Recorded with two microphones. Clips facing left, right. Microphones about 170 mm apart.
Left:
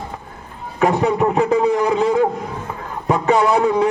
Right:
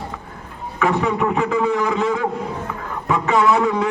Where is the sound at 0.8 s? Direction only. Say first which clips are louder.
Left 3 dB; 40° left (ahead or behind).